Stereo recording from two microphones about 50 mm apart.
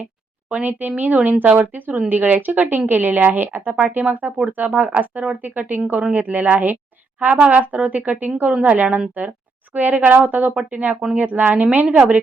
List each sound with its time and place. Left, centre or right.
0.5 s a woman's voice: right